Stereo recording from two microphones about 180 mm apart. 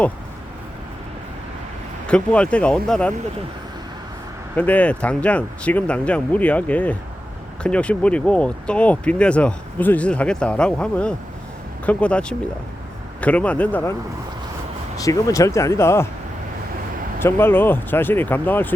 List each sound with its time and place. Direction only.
2.0 s speech: 5° left (ahead or behind)
4.5 s speech: 10° left (ahead or behind)
15.0 s speech: 15° left (ahead or behind)
17.2 s speech: 15° left (ahead or behind)